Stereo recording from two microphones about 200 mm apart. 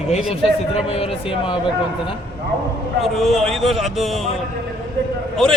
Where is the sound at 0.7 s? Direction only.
30° left (ahead or behind).